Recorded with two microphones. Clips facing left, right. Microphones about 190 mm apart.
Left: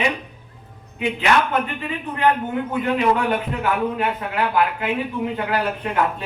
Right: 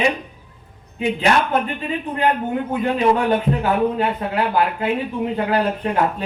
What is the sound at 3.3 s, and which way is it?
A man's voice, 30° right (ahead or behind).